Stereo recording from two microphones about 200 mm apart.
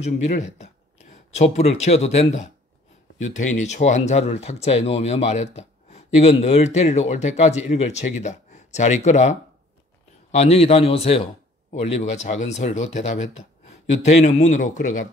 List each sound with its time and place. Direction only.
0.0 s speech: 35° left (ahead or behind)